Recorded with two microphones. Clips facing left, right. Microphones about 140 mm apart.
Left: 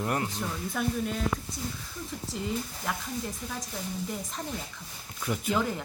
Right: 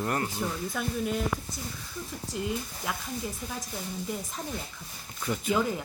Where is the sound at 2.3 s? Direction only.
Centre (ahead or behind).